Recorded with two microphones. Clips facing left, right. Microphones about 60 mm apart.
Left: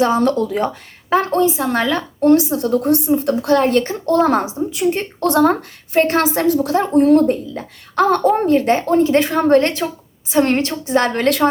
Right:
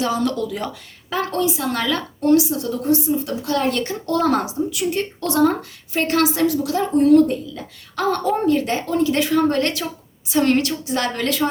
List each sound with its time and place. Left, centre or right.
0.0 s speech: left
5.2 s speech: left